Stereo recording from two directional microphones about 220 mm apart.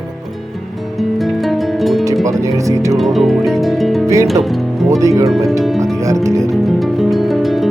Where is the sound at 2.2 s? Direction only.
15° right (ahead or behind).